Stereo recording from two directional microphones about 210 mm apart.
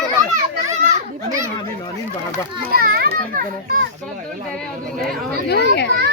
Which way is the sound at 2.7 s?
45° right (ahead or behind).